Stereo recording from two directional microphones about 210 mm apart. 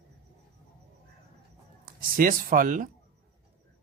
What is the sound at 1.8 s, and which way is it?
Speech, 40° right (ahead or behind).